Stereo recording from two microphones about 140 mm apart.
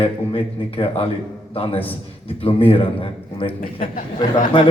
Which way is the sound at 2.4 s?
40° left (ahead or behind).